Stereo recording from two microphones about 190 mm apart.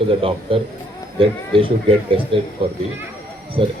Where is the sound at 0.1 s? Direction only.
30° right (ahead or behind).